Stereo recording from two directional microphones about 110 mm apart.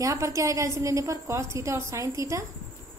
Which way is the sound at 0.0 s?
30° right (ahead or behind).